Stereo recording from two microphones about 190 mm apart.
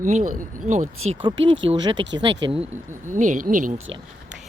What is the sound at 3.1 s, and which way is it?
Speech, 40° right (ahead or behind).